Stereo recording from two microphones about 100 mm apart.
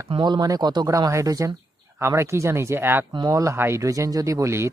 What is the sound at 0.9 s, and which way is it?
Speech, 30° right (ahead or behind).